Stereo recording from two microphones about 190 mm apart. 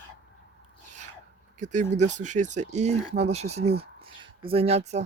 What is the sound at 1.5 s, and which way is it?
Speech, 40° right (ahead or behind).